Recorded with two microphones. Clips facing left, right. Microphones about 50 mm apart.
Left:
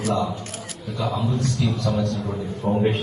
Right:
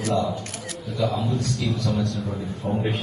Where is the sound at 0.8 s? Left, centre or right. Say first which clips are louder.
Right 2 dB; centre.